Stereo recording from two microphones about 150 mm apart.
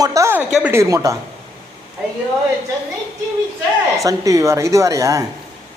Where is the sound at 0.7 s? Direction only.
20° right (ahead or behind).